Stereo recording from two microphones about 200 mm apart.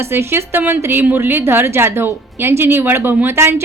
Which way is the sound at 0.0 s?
10° right (ahead or behind).